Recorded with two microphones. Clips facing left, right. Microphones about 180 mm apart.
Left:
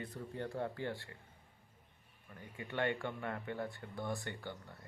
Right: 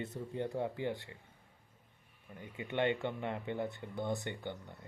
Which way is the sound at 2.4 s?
20° right (ahead or behind).